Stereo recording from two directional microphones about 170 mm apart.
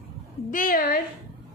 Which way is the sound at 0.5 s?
55° left (ahead or behind).